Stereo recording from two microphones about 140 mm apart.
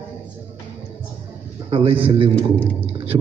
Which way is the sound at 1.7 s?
45° right (ahead or behind).